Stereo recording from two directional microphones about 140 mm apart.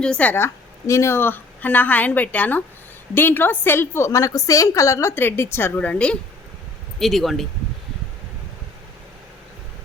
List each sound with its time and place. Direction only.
0.0 s a woman's voice: 10° left (ahead or behind)